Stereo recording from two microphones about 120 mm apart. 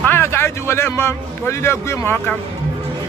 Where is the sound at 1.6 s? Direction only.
20° left (ahead or behind).